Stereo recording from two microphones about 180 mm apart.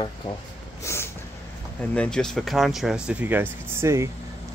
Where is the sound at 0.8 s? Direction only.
15° left (ahead or behind).